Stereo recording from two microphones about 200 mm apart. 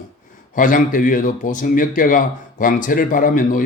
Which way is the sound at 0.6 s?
40° left (ahead or behind).